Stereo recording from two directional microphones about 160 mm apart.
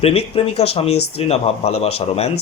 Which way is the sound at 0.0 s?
40° left (ahead or behind).